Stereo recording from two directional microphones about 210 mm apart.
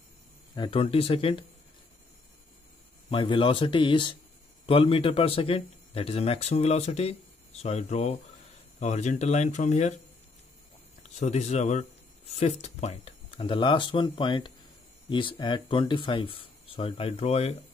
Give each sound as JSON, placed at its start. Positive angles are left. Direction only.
{"t": 0.6, "sound": "speech", "side_deg": 25}
{"t": 3.1, "sound": "speech", "side_deg": 25}
{"t": 11.0, "sound": "speech", "side_deg": 30}